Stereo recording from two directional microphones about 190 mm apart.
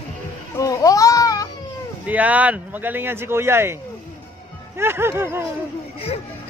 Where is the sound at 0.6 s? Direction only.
20° left (ahead or behind).